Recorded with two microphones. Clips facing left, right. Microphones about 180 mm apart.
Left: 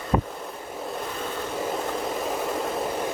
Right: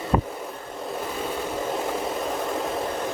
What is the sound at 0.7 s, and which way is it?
Waves, centre (ahead or behind).